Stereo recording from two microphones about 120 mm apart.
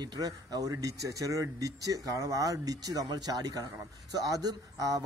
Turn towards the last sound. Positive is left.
turn(degrees=-30)  # may be behind; listen again after turning